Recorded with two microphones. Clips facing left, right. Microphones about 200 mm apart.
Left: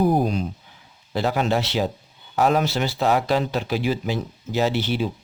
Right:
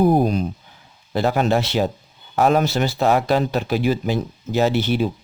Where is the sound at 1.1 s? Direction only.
50° right (ahead or behind).